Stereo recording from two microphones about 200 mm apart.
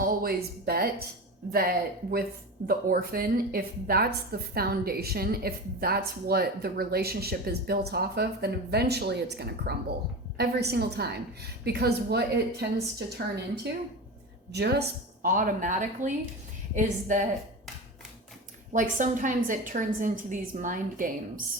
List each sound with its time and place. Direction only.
0.0 s a woman's voice: 45° right (ahead or behind)
14.5 s a woman's voice: 55° right (ahead or behind); by 17.2 s 40° right (ahead or behind)
18.7 s a woman's voice: 40° right (ahead or behind)